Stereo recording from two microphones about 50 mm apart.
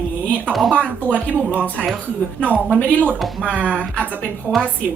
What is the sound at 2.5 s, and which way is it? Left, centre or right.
Speech, right.